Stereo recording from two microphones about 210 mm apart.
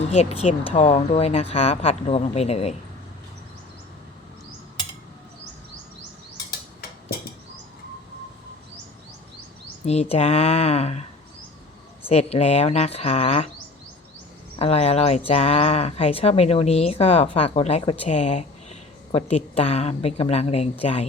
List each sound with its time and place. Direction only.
0.0 s speech: 30° left (ahead or behind)
9.8 s speech: 30° left (ahead or behind)
12.0 s speech: 30° left (ahead or behind)
14.6 s speech: 30° left (ahead or behind)